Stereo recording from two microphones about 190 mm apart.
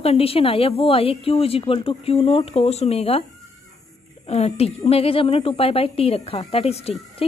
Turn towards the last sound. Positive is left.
turn(degrees=30)  # may be behind; listen again after turning